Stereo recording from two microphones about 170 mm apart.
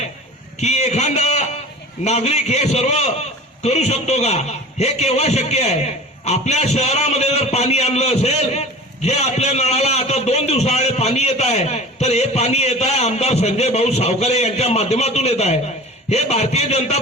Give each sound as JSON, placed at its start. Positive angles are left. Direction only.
{"t": 0.6, "sound": "a man's voice", "side_deg": 40}